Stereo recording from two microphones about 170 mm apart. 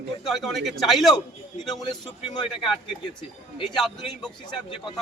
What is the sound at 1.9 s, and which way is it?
Speech, 25° left (ahead or behind).